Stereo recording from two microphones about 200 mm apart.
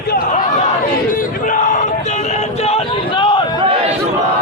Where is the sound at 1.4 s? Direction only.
40° left (ahead or behind).